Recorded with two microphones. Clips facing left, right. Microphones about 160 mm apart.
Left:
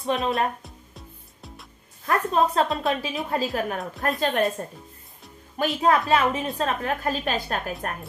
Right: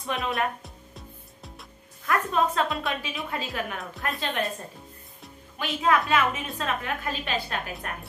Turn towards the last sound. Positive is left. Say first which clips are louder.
# left 4 dB
turn(degrees=45)  # may be behind; listen again after turning